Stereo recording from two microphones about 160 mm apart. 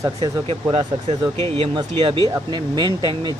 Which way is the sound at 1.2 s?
30° right (ahead or behind).